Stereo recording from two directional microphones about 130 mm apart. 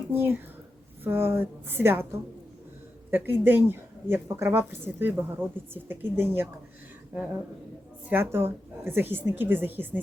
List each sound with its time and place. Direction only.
0.1 s a woman's voice: 15° right (ahead or behind)
3.1 s a woman's voice: 15° right (ahead or behind)
8.1 s a woman's voice: 15° right (ahead or behind)